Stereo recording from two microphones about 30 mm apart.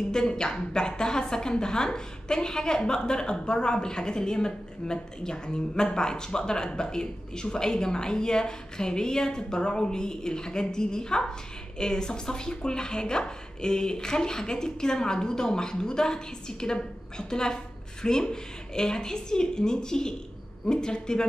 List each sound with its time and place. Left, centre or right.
0.1 s a woman's voice: left